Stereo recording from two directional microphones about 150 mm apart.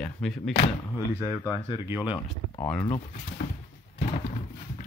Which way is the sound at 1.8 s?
15° right (ahead or behind).